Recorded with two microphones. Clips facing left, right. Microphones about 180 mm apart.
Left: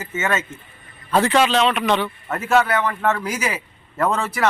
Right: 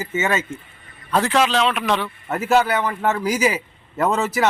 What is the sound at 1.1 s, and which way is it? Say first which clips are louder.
A man's voice: left 1 dB; centre (ahead or behind).